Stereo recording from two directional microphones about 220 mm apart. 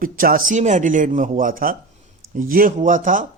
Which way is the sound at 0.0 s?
40° right (ahead or behind).